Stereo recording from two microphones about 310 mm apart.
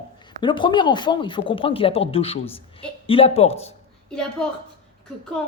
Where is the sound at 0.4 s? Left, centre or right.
Centre.